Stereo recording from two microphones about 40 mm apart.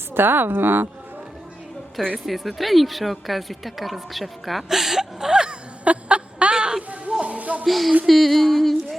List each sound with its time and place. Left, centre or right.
0.1 s a woman's voice: right
2.1 s speech: centre; by 5.5 s right
5.8 s snicker: right
7.2 s music: right
7.6 s speech: centre